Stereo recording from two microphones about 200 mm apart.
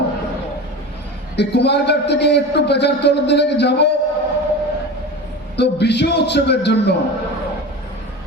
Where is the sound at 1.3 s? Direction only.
55° left (ahead or behind).